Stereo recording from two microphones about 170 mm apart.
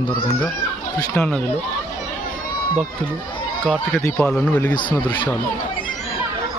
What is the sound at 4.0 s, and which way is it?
Speech, 10° left (ahead or behind).